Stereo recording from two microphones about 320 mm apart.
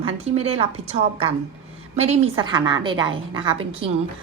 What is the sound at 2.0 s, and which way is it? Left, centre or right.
A woman's voice, centre.